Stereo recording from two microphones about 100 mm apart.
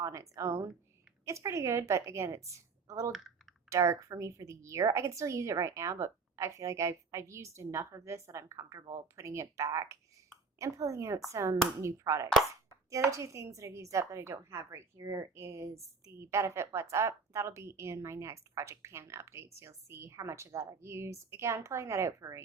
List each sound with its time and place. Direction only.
0.0 s a woman's voice: 30° right (ahead or behind)